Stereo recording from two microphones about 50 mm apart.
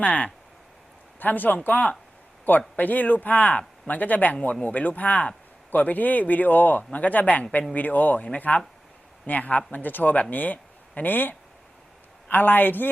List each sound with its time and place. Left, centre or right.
0.0 s speech: left